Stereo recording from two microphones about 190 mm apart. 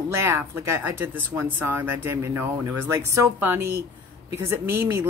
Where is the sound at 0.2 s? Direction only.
15° right (ahead or behind).